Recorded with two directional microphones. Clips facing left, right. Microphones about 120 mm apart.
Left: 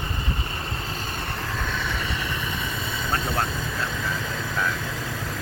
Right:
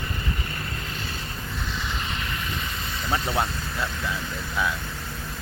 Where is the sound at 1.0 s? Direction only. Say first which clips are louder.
Left 4 dB; 60° left (ahead or behind); by 1.6 s 80° left.